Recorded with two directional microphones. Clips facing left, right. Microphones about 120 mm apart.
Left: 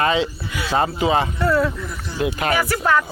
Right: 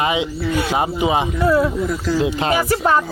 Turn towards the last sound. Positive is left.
turn(degrees=-20)  # may be behind; listen again after turning